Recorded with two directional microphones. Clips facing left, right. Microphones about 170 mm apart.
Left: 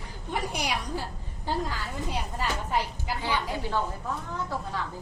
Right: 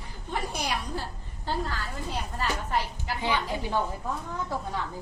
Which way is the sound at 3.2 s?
15° right (ahead or behind).